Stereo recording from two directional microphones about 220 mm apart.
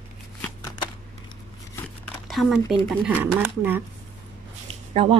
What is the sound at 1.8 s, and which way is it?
Crumpling, centre (ahead or behind).